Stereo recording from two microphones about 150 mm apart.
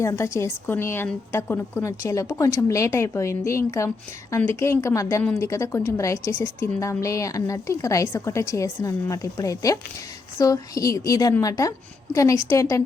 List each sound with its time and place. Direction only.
0.0 s a woman's voice: 20° left (ahead or behind)